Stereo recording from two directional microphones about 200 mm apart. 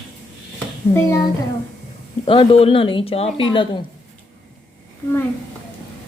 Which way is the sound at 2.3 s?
30° left (ahead or behind).